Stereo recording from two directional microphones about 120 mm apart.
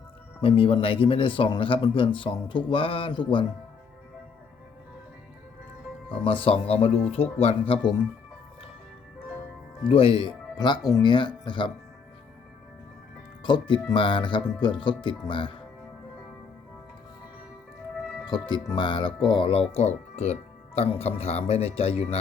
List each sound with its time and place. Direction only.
0.4 s speech: 50° left (ahead or behind)
6.1 s speech: 50° left (ahead or behind)
9.9 s speech: 50° left (ahead or behind)
13.4 s speech: 40° left (ahead or behind)
18.3 s speech: 40° left (ahead or behind)
19.7 s speech: 65° left (ahead or behind)